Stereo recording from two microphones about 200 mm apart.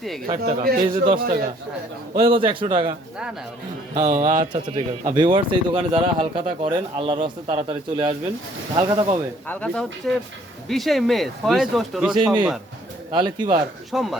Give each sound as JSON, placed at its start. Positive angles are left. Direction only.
{"t": 0.4, "sound": "a man's voice", "side_deg": -50}
{"t": 0.9, "sound": "speech", "side_deg": -25}
{"t": 1.2, "sound": "a man's voice", "side_deg": -50}
{"t": 2.1, "sound": "speech", "side_deg": -25}
{"t": 3.9, "sound": "speech", "side_deg": -20}
{"t": 9.5, "sound": "speech", "side_deg": 5}
{"t": 12.1, "sound": "speech", "side_deg": -20}
{"t": 13.9, "sound": "speech", "side_deg": 0}